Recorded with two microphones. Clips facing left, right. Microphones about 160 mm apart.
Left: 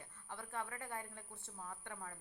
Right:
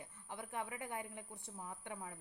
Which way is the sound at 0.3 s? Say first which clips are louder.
Right 1 dB; 15° right (ahead or behind).